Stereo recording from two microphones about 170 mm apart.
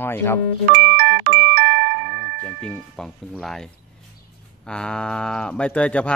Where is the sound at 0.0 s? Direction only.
10° left (ahead or behind).